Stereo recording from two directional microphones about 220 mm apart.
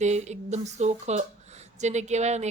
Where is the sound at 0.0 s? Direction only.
30° right (ahead or behind).